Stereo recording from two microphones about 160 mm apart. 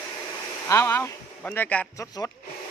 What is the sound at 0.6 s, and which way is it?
Speech, 15° left (ahead or behind).